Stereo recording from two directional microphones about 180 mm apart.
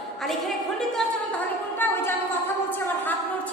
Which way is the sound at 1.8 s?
10° left (ahead or behind).